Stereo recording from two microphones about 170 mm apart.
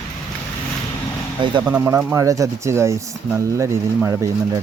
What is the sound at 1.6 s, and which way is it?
Speech, 10° right (ahead or behind).